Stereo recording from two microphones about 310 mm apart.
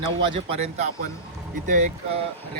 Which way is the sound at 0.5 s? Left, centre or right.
Centre.